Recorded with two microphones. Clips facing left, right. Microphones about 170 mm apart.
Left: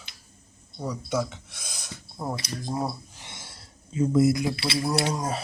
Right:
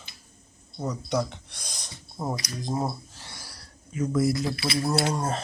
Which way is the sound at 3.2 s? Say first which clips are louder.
Even; 20° left (ahead or behind).